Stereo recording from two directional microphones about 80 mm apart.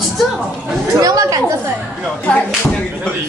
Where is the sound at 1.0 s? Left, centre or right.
Right.